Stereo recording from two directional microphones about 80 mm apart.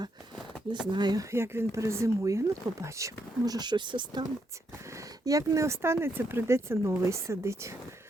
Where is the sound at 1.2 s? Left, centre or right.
Right.